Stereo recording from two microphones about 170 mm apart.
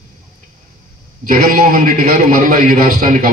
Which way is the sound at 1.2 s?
55° right (ahead or behind).